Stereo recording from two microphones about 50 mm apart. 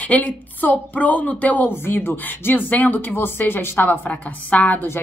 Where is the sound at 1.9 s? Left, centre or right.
Left.